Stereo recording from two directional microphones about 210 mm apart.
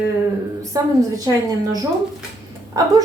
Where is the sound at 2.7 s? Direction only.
15° right (ahead or behind).